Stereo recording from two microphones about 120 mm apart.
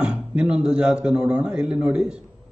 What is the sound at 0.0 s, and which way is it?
A man's voice, 10° right (ahead or behind).